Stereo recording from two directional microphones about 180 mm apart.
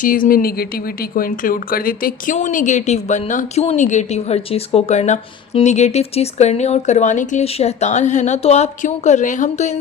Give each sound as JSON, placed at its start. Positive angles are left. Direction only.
{"t": 0.0, "sound": "a woman's voice", "side_deg": 50}